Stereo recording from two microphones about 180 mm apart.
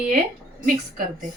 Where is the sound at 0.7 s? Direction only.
45° right (ahead or behind).